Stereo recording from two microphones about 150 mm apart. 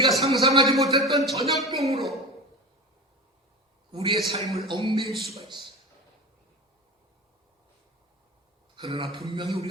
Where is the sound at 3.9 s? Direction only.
35° right (ahead or behind).